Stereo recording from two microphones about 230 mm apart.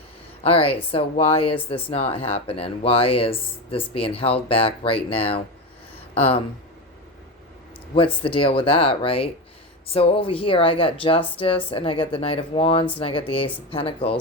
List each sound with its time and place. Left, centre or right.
0.4 s speech: left
7.9 s speech: left